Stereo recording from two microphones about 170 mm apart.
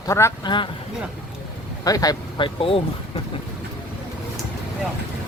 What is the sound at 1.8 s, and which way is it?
Speech, 20° left (ahead or behind).